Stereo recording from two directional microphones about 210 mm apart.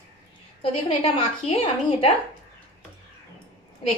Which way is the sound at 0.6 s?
25° left (ahead or behind).